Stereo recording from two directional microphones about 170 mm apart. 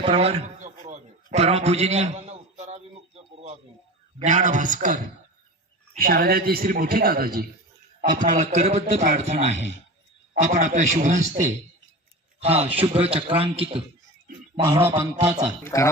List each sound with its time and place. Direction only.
0.0 s speech: 35° right (ahead or behind)
0.6 s a sound: 45° right (ahead or behind)
4.2 s a man's voice: 45° right (ahead or behind); by 7.4 s 60° right (ahead or behind)
8.1 s a man's voice: 50° right (ahead or behind)
10.4 s a man's voice: 45° right (ahead or behind)
15.6 s speech: 15° left (ahead or behind)